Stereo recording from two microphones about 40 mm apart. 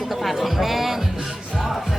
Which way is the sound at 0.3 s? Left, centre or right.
Centre.